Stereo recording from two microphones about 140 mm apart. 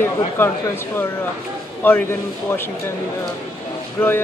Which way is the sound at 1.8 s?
15° left (ahead or behind).